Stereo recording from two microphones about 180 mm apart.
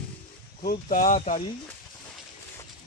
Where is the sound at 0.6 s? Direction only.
50° left (ahead or behind).